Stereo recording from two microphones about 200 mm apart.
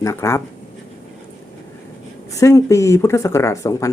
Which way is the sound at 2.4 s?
15° left (ahead or behind).